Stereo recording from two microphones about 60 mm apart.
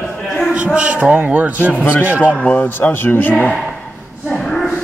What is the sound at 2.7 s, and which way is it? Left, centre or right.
Speech, left.